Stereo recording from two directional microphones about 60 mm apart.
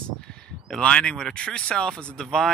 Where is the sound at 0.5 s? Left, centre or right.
Centre.